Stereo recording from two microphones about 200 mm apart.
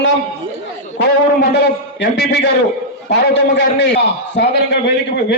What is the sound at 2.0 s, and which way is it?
A man's voice, 55° left (ahead or behind).